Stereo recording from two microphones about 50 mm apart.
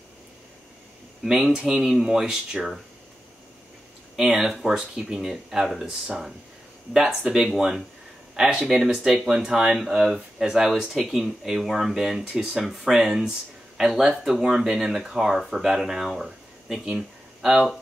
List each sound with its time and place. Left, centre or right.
1.5 s speech: centre
4.2 s speech: centre
6.9 s speech: centre